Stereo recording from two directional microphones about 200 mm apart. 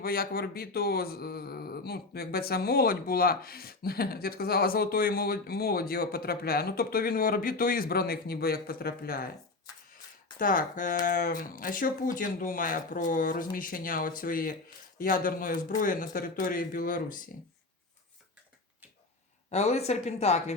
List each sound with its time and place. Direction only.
0.0 s speech: 50° left (ahead or behind)
10.3 s speech: 45° left (ahead or behind)
19.5 s speech: 35° left (ahead or behind)